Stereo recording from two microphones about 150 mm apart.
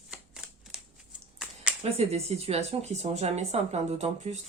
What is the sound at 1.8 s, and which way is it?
Speech, 45° right (ahead or behind).